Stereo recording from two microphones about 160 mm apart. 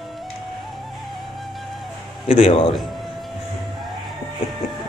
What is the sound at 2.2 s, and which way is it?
Speech, 35° left (ahead or behind).